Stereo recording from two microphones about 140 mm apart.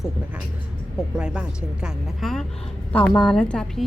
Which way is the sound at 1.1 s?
5° right (ahead or behind).